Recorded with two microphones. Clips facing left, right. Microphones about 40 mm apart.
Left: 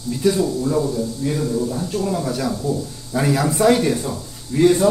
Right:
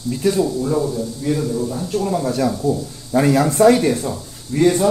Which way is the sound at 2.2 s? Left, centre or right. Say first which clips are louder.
Right 3 dB; centre.